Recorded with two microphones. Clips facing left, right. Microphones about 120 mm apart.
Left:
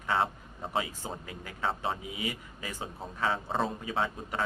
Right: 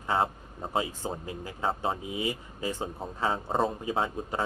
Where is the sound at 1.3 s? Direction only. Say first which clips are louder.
Right 1 dB; 30° right (ahead or behind).